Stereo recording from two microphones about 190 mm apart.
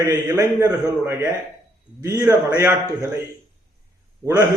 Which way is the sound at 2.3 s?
15° right (ahead or behind).